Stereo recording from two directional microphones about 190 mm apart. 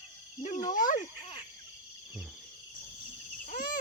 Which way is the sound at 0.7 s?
45° left (ahead or behind).